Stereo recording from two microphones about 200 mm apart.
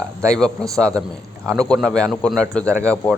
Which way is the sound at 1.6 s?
5° left (ahead or behind).